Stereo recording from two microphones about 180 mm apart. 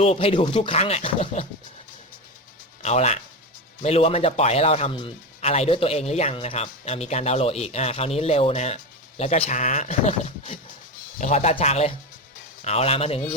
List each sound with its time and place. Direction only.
0.0 s speech: 35° left (ahead or behind)
2.8 s speech: 40° left (ahead or behind)